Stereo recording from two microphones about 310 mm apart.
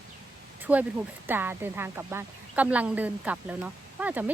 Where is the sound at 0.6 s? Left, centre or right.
Centre.